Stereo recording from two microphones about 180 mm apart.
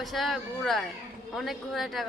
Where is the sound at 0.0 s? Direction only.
Centre (ahead or behind).